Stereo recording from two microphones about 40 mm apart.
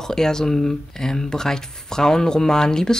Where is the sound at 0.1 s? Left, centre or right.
Centre.